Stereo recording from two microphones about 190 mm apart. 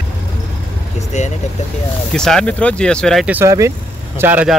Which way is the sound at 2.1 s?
5° left (ahead or behind).